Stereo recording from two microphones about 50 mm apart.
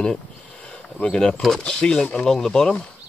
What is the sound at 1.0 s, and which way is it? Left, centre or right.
Speech, centre.